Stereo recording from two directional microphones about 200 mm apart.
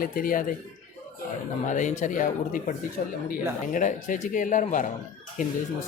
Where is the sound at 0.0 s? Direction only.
45° left (ahead or behind).